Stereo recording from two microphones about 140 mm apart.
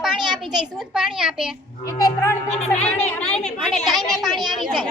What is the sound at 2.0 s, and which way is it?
Speech, 25° left (ahead or behind).